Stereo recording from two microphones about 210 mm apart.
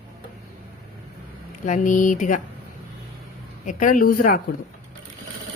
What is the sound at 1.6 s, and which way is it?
Speech, 35° left (ahead or behind).